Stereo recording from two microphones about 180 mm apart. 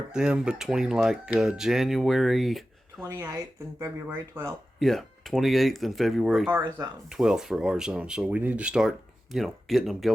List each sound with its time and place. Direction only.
0.1 s speech: 5° right (ahead or behind)
3.0 s speech: 20° right (ahead or behind)
4.8 s speech: centre (ahead or behind)
6.5 s speech: 15° right (ahead or behind)
7.1 s speech: 5° right (ahead or behind)